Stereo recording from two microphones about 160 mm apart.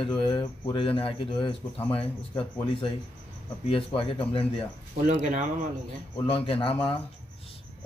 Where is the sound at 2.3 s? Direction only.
35° left (ahead or behind).